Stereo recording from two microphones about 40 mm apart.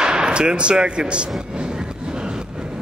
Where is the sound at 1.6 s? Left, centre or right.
Right.